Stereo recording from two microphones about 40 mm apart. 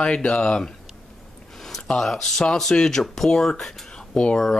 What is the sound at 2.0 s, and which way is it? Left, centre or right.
Speech, centre.